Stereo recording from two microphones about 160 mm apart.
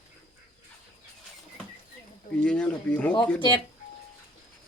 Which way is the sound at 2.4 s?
5° left (ahead or behind).